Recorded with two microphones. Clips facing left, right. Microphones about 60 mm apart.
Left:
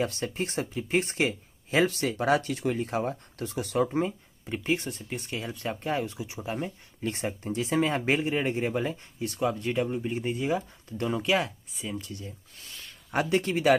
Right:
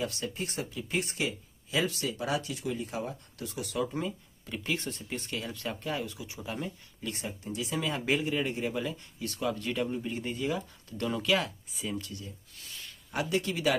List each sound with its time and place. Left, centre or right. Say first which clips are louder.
0.0 s speech: left 5 dB; left
4.8 s speech: left 2 dB; centre
5.3 s speech: left 4 dB; left
11.7 s speech: even; centre
13.1 s speech: left 5 dB; left